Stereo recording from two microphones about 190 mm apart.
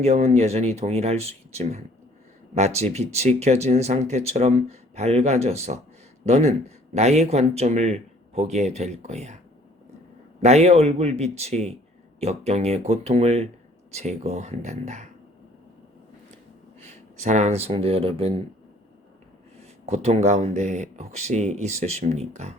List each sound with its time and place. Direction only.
0.0 s speech: 35° right (ahead or behind)
10.4 s speech: 35° right (ahead or behind)
17.2 s speech: 40° right (ahead or behind)
19.5 s speech: 35° right (ahead or behind)